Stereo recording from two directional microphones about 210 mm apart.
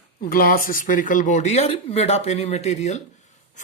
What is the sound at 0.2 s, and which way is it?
Speech, 45° left (ahead or behind).